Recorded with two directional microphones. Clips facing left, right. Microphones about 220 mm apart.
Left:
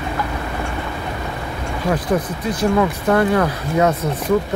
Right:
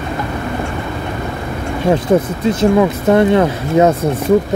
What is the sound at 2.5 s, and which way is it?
Speech, 25° right (ahead or behind).